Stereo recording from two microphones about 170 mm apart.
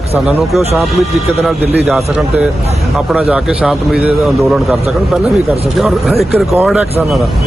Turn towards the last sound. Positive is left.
turn(degrees=0)  # may be behind; listen again after turning